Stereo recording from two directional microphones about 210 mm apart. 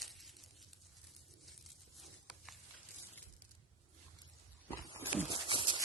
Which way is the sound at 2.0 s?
Centre (ahead or behind).